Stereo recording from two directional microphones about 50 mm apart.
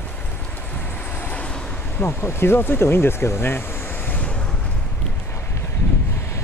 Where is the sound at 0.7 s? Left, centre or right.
Left.